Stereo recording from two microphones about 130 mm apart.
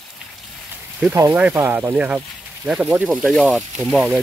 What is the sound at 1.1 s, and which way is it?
Speech, 20° right (ahead or behind).